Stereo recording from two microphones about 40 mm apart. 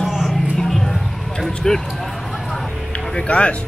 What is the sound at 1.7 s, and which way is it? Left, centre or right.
Speech, centre.